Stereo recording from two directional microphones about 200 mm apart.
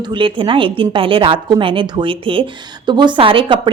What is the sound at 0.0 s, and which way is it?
A woman's voice, 25° right (ahead or behind).